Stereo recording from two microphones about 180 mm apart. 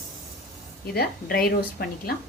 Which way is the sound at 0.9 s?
60° left (ahead or behind).